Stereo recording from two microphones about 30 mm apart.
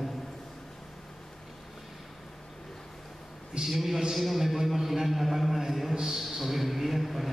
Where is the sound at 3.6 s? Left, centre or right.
Centre.